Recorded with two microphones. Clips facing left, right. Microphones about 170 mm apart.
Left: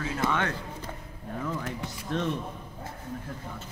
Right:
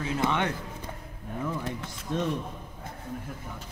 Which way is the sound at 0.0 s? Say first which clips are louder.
Right 1 dB; 20° right (ahead or behind).